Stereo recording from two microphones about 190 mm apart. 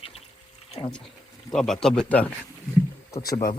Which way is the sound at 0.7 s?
25° left (ahead or behind).